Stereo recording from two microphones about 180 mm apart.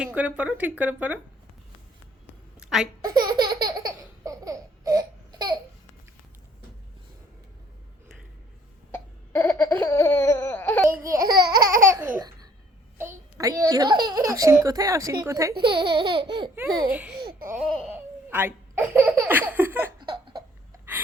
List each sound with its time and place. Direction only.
0.0 s speech: 5° right (ahead or behind)
2.6 s a sound: 5° right (ahead or behind)
3.0 s laughter: 20° right (ahead or behind)
8.9 s laughter: 10° left (ahead or behind)
10.8 s speech: 15° right (ahead or behind)
11.3 s babbling: 60° right (ahead or behind)
11.8 s laughter: 15° right (ahead or behind)
13.0 s a child's voice: 15° right (ahead or behind)
15.5 s babbling: 65° right (ahead or behind)
15.9 s laughter: 25° right (ahead or behind)
16.9 s speech: 10° right (ahead or behind)
17.2 s babbling: 60° right (ahead or behind)
17.9 s speech: 10° right (ahead or behind)
20.0 s a sound: 25° right (ahead or behind)